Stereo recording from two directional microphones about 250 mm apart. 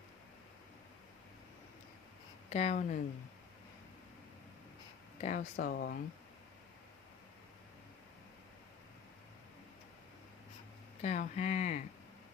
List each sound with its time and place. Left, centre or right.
2.5 s speech: left
5.2 s speech: left
11.0 s speech: left